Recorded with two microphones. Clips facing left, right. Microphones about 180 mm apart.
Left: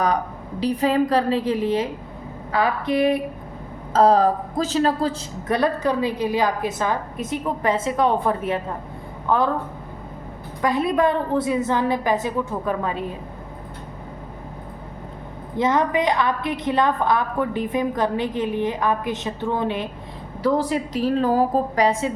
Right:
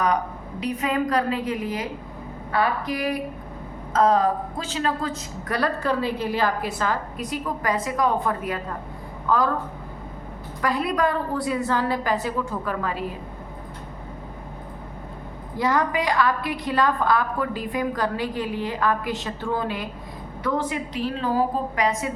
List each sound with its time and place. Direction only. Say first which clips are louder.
0.6 s a woman's voice: left 5 dB; 30° left (ahead or behind)
5.5 s a woman's voice: left 4 dB; 20° left (ahead or behind)
10.6 s a woman's voice: left 4 dB; 20° left (ahead or behind)
15.5 s a woman's voice: left 3 dB; 20° left (ahead or behind)
20.4 s a woman's voice: left 5 dB; 35° left (ahead or behind)